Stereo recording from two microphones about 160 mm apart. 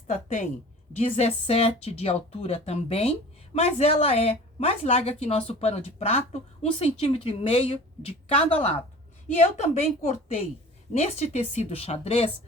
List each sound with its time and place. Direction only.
0.1 s a woman's voice: 50° left (ahead or behind)